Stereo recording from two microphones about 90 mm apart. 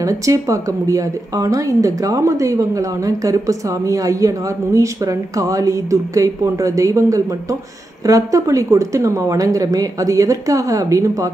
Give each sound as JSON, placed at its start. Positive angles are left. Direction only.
{"t": 0.0, "sound": "a woman's voice", "side_deg": -40}